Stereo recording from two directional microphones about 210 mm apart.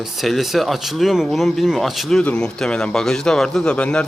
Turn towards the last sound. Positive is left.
turn(degrees=5)  # may be behind; listen again after turning